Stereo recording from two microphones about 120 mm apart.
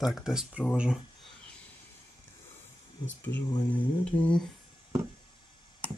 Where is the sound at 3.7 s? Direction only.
10° left (ahead or behind).